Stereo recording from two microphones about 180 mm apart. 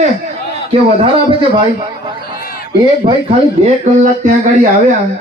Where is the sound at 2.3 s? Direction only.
55° left (ahead or behind).